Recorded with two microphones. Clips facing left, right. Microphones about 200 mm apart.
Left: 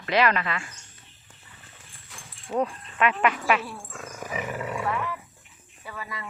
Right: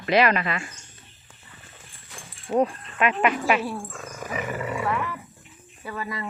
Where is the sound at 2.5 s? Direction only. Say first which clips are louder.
Right 4 dB; 10° right (ahead or behind).